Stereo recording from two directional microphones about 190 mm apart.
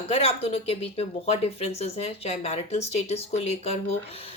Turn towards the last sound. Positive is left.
turn(degrees=35)  # may be behind; listen again after turning